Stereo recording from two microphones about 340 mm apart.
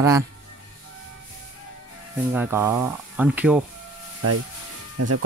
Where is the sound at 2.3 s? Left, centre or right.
Centre.